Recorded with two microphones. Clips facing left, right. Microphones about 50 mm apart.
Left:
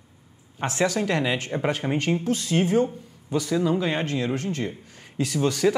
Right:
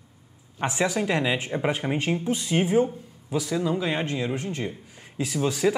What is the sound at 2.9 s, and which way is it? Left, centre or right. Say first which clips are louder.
Speech: left 1 dB; centre.